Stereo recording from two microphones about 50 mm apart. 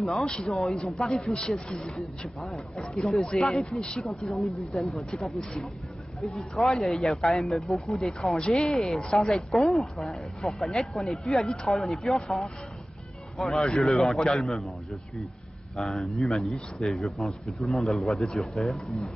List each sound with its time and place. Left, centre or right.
0.2 s a man's voice: centre
5.4 s a man's voice: centre
6.5 s speech: centre